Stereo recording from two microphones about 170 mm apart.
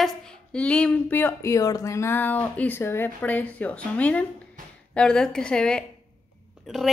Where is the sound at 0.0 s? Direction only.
5° left (ahead or behind).